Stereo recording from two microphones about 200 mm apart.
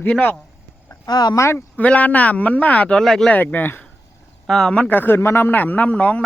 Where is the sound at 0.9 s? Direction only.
20° left (ahead or behind).